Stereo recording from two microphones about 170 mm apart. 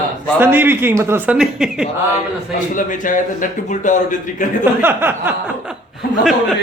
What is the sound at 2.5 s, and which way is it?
A man's voice, 50° left (ahead or behind).